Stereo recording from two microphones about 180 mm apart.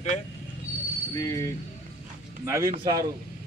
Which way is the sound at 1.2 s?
20° left (ahead or behind).